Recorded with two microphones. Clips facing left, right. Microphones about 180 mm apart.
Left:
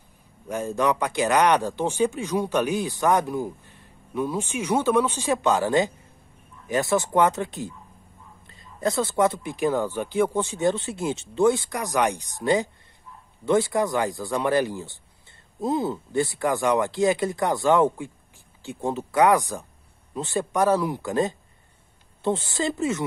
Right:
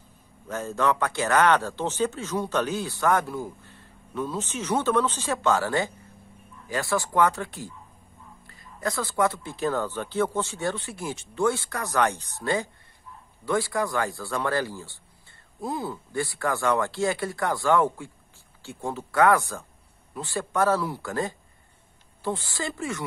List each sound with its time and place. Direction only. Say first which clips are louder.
0.5 s speech: left 2 dB; 15° left (ahead or behind)